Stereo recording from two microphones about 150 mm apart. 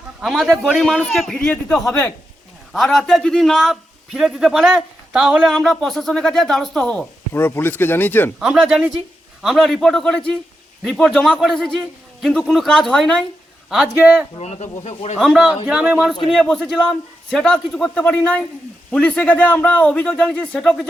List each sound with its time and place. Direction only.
0.2 s a man's voice: centre (ahead or behind); by 2.1 s 15° left (ahead or behind)
2.7 s a man's voice: centre (ahead or behind)
8.4 s a man's voice: 5° right (ahead or behind)
13.7 s a man's voice: 5° right (ahead or behind)
14.3 s speech: 45° left (ahead or behind)
15.2 s a man's voice: centre (ahead or behind)
16.3 s a man's voice: 5° left (ahead or behind)